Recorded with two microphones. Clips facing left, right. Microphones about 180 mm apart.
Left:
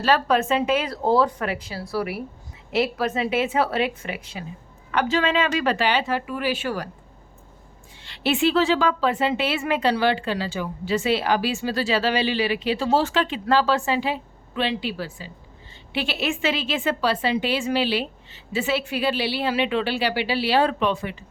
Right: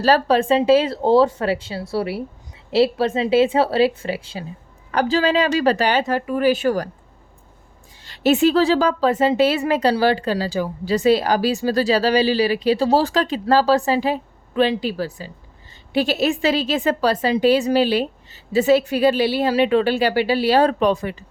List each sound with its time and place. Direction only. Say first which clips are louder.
0.0 s a woman's voice: right 4 dB; 35° right (ahead or behind)
8.0 s a woman's voice: right 6 dB; 40° right (ahead or behind)